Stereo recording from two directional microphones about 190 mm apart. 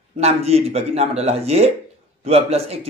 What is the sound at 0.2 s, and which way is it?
A man's voice, 35° right (ahead or behind).